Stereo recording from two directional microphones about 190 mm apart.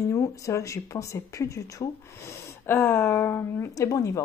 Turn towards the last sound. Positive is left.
turn(degrees=15)  # may be behind; listen again after turning